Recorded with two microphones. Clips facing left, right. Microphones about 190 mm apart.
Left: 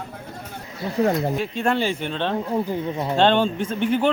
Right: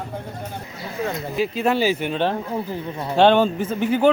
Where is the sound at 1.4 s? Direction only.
5° right (ahead or behind).